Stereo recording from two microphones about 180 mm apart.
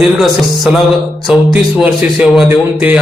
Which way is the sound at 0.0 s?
Centre (ahead or behind).